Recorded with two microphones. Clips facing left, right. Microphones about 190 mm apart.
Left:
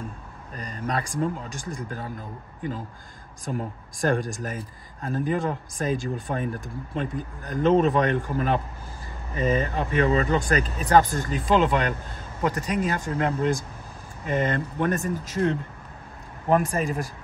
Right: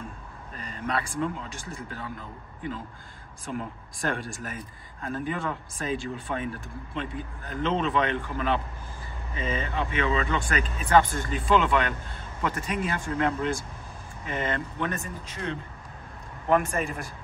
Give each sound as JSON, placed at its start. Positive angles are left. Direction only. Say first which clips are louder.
{"t": 0.6, "sound": "a man's voice", "louder": "left 2 dB", "side_deg": 40}